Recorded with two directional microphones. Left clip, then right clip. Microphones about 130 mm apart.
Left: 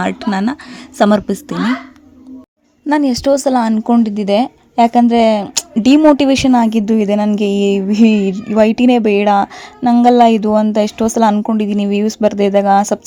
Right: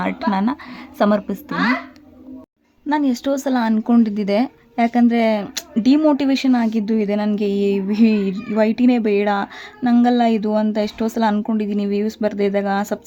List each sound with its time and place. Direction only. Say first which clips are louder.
0.0 s speech: left 3 dB; 40° left (ahead or behind)
2.9 s speech: left 7 dB; 40° left (ahead or behind)
4.0 s speech: left 5 dB; 30° left (ahead or behind)